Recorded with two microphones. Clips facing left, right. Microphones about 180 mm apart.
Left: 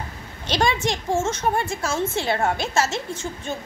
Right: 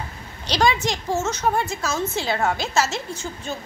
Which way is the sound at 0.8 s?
25° left (ahead or behind).